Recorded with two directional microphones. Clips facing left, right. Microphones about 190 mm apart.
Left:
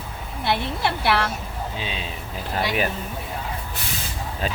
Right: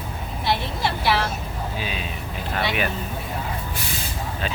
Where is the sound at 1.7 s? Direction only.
25° left (ahead or behind).